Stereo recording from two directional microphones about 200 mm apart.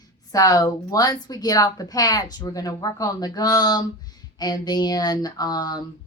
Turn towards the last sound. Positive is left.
turn(degrees=20)  # may be behind; listen again after turning